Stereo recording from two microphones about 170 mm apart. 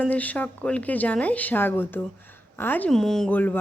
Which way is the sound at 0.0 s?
10° left (ahead or behind).